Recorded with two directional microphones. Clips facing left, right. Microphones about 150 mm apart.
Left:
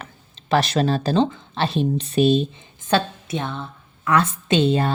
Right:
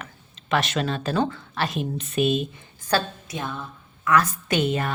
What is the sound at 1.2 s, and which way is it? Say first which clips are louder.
A woman's voice: left 4 dB; 20° left (ahead or behind).